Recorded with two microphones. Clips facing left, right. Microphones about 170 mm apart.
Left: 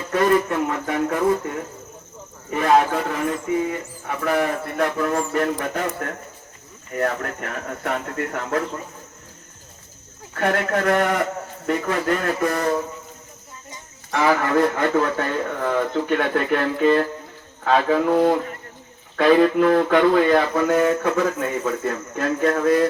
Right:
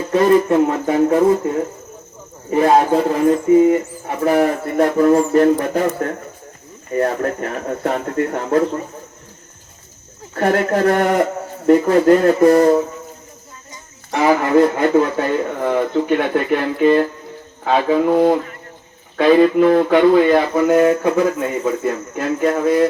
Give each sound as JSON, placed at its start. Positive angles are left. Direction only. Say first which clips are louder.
{"t": 0.1, "sound": "speech", "louder": "right 6 dB", "side_deg": -25}
{"t": 6.9, "sound": "speech", "louder": "right 6 dB", "side_deg": -35}
{"t": 10.3, "sound": "speech", "louder": "right 5 dB", "side_deg": -35}
{"t": 14.1, "sound": "speech", "louder": "right 5 dB", "side_deg": -20}